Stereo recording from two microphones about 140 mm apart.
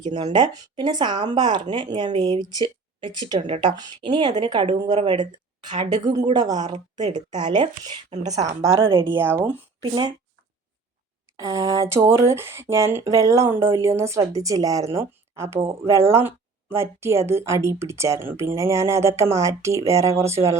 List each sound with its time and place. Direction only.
0.3 s speech: 30° right (ahead or behind)
8.3 s speech: 20° right (ahead or behind)
8.8 s speech: 40° right (ahead or behind)
9.0 s speech: 15° right (ahead or behind)
9.8 s speech: 35° right (ahead or behind)
11.3 s speech: 25° right (ahead or behind)